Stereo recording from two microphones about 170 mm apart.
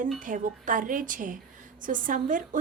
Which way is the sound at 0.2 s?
50° right (ahead or behind).